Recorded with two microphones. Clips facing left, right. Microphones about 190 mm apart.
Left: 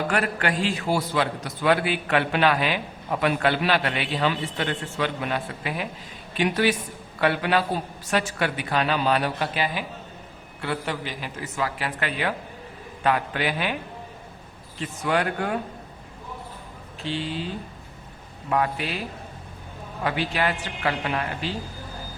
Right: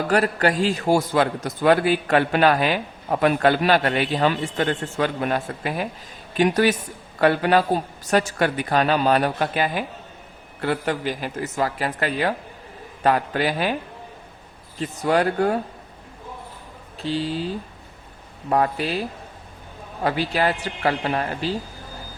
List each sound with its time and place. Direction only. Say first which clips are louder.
0.1 s a man's voice: right 5 dB; 40° right (ahead or behind)
14.8 s a man's voice: right 4 dB; 35° right (ahead or behind)
17.0 s a man's voice: right 4 dB; 35° right (ahead or behind)
20.1 s a man's voice: right 4 dB; 35° right (ahead or behind)